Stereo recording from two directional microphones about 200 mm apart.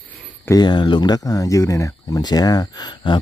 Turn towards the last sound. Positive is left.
turn(degrees=25)  # may be behind; listen again after turning